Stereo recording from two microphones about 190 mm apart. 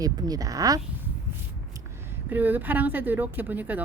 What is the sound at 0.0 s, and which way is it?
Speech, 20° right (ahead or behind).